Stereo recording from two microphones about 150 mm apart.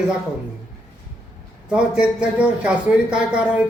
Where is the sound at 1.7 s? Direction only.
5° right (ahead or behind).